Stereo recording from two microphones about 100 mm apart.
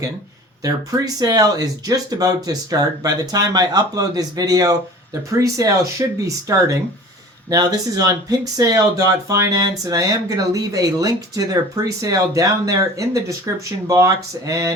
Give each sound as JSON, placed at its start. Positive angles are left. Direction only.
{"t": 0.6, "sound": "speech", "side_deg": -35}